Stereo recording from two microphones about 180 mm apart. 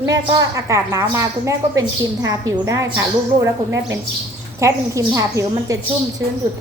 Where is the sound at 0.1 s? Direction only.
20° right (ahead or behind).